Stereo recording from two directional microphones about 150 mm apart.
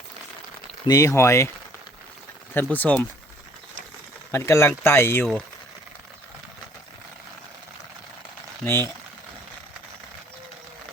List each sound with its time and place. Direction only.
0.9 s speech: 20° left (ahead or behind)
2.6 s speech: 10° left (ahead or behind)
4.3 s speech: 15° left (ahead or behind)
8.6 s speech: 15° left (ahead or behind)